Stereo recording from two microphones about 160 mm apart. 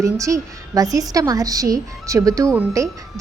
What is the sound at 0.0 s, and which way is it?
A woman's voice, 20° right (ahead or behind).